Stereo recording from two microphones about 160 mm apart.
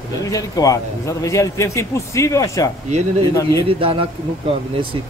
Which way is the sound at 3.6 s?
35° right (ahead or behind).